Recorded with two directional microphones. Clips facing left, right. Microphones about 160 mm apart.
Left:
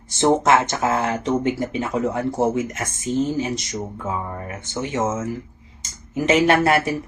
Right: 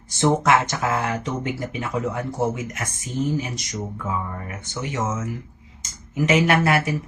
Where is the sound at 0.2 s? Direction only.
25° left (ahead or behind).